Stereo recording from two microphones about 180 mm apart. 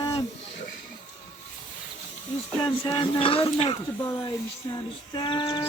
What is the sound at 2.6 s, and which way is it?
Speech, 25° left (ahead or behind).